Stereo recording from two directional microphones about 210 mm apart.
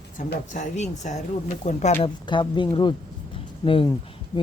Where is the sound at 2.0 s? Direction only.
20° left (ahead or behind).